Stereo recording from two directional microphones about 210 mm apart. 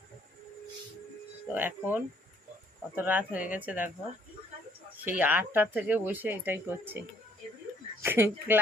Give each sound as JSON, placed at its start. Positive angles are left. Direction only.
{"t": 1.5, "sound": "speech", "side_deg": -10}
{"t": 5.0, "sound": "speech", "side_deg": -10}
{"t": 8.0, "sound": "speech", "side_deg": -10}